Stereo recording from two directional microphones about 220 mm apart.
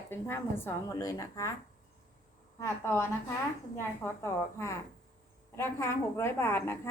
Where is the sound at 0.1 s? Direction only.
10° left (ahead or behind).